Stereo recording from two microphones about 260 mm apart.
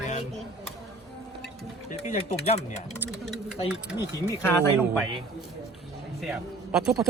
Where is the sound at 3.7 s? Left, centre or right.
Centre.